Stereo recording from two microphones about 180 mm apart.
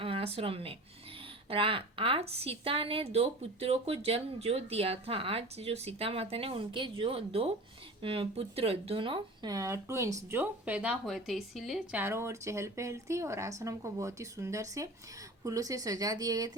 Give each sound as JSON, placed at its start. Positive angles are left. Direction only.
{"t": 0.0, "sound": "a woman's voice", "side_deg": -35}